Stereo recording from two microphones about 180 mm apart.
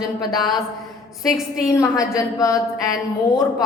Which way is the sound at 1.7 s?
15° left (ahead or behind).